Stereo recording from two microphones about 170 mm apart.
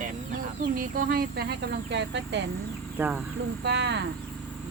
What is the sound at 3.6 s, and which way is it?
Speech, 90° right.